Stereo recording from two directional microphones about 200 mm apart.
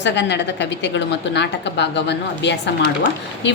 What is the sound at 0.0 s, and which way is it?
A woman's voice, 60° left (ahead or behind).